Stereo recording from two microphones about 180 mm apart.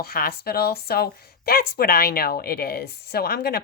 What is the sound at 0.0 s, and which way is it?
Speech, 60° left (ahead or behind).